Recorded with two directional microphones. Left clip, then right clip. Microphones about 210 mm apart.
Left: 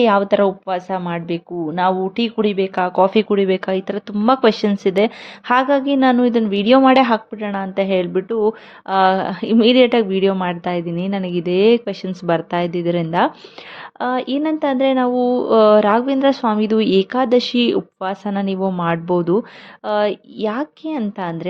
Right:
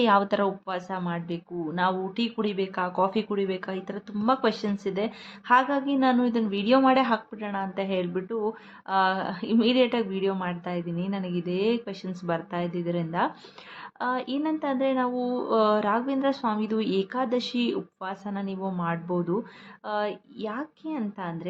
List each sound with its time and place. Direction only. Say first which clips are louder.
0.0 s a woman's voice: left 8 dB; 25° left (ahead or behind)